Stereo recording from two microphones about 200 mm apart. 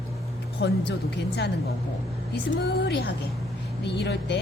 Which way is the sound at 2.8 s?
55° left (ahead or behind).